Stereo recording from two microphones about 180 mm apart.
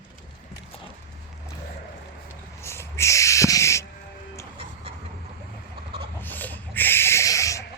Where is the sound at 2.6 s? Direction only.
15° left (ahead or behind).